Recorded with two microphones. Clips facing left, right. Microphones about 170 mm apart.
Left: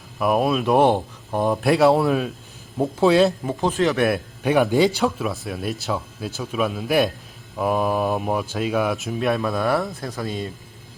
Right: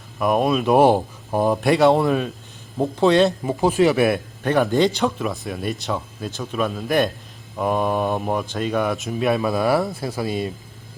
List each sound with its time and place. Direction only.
0.2 s speech: centre (ahead or behind)
4.4 s speech: 10° left (ahead or behind); by 10.5 s 10° right (ahead or behind)